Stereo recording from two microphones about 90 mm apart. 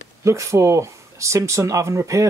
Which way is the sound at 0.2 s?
35° right (ahead or behind).